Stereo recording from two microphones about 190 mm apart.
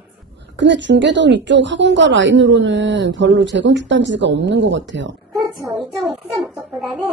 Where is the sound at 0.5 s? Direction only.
70° right (ahead or behind).